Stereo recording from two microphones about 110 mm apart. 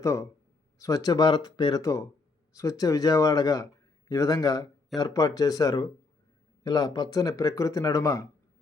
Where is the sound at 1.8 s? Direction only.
30° left (ahead or behind).